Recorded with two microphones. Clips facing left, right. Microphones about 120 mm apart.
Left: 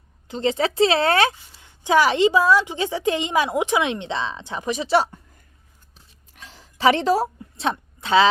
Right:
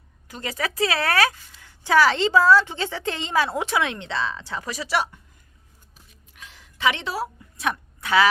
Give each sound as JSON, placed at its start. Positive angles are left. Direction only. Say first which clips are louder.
{"t": 0.3, "sound": "a woman's voice", "louder": "left 8 dB", "side_deg": 25}
{"t": 6.3, "sound": "a sound", "louder": "left 3 dB", "side_deg": 35}
{"t": 7.5, "sound": "a woman's voice", "louder": "left 2 dB", "side_deg": 25}